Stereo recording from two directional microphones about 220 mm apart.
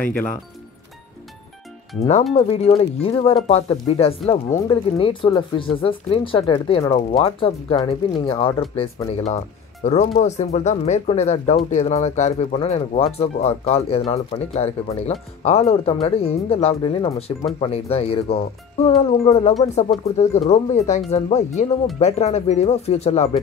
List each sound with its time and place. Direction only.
0.0 s speech: 10° left (ahead or behind)
2.3 s speech: 25° left (ahead or behind)